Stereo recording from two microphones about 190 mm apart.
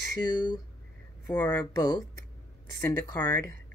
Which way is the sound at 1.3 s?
15° left (ahead or behind).